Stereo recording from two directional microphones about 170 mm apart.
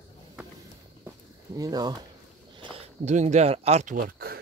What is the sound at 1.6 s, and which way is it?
Speech, 25° right (ahead or behind).